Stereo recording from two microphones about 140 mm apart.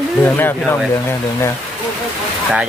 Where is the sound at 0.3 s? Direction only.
15° left (ahead or behind).